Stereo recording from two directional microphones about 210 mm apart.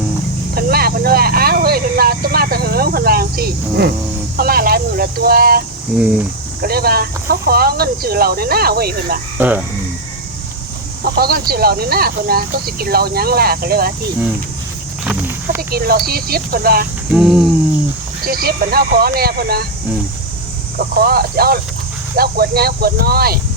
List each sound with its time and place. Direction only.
0.5 s a sound: 45° right (ahead or behind)
4.4 s speech: 45° right (ahead or behind)
6.0 s speech: 5° right (ahead or behind)
6.6 s speech: 45° right (ahead or behind)
9.4 s speech: 10° right (ahead or behind)
11.0 s speech: 45° right (ahead or behind)
15.0 s a sound: 5° right (ahead or behind)
15.7 s speech: 45° right (ahead or behind)
17.1 s cricket: 5° right (ahead or behind)
18.3 s speech: 45° right (ahead or behind)
20.7 s speech: 45° right (ahead or behind)